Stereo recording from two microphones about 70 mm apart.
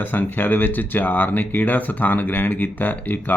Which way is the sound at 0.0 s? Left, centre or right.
Left.